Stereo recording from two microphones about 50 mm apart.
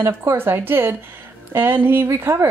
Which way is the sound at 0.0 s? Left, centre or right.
Right.